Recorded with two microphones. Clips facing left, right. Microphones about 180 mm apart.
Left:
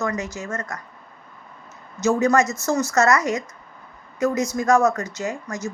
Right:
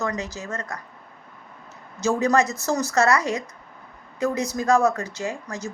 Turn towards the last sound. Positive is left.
turn(degrees=-30)  # may be behind; listen again after turning